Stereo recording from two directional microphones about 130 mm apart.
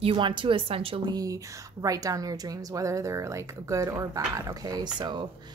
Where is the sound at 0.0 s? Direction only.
40° right (ahead or behind).